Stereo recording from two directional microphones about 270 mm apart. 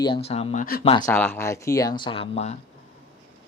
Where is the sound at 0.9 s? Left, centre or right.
Centre.